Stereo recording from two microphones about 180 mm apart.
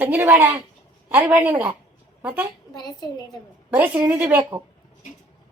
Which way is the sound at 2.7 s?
25° left (ahead or behind).